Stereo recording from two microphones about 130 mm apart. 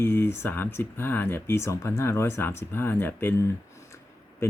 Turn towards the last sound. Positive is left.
turn(degrees=15)  # may be behind; listen again after turning